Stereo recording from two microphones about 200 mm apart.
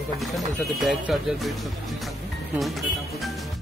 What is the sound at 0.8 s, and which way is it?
Speech, centre (ahead or behind).